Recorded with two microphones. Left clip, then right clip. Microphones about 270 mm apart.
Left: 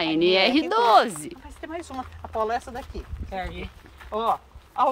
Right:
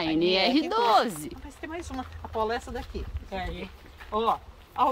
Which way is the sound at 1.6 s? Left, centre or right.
Centre.